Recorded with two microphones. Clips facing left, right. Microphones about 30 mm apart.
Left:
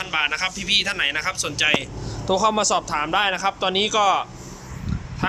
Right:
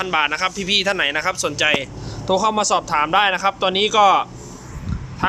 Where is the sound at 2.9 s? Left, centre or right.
Centre.